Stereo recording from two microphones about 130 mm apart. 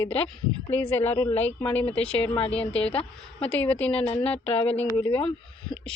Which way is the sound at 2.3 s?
45° left (ahead or behind).